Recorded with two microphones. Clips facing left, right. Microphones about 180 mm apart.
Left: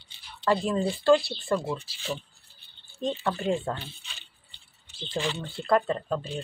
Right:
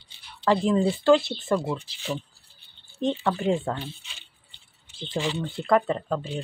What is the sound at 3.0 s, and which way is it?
Speech, 20° right (ahead or behind).